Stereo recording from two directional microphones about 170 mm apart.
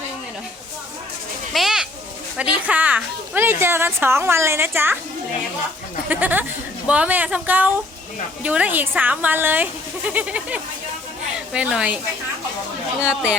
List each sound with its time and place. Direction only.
1.5 s bird: 5° right (ahead or behind)
2.4 s a woman's voice: 10° right (ahead or behind)
6.1 s a woman's voice: 10° right (ahead or behind)